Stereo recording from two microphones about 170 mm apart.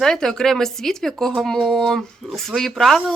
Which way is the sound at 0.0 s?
5° left (ahead or behind).